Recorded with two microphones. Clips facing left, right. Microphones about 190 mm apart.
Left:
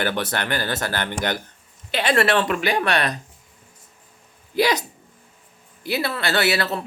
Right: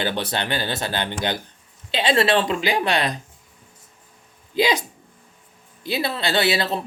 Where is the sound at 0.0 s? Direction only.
15° right (ahead or behind).